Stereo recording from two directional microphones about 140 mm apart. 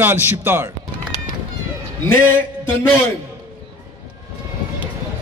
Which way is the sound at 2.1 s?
15° left (ahead or behind).